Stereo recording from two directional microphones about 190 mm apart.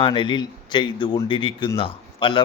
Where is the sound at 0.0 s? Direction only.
25° left (ahead or behind).